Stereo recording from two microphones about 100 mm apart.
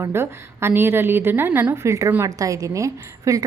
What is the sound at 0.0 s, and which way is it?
A woman's voice, 25° right (ahead or behind).